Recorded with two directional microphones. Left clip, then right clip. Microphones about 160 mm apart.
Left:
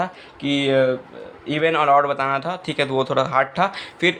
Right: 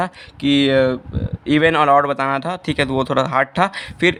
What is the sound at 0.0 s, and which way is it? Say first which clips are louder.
Speech: right 4 dB; 65° right (ahead or behind).